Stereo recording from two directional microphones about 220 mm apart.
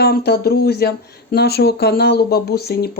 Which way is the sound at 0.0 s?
45° left (ahead or behind).